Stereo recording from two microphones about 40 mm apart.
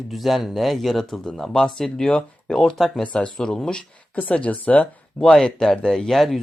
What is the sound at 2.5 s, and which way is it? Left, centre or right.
Speech, centre.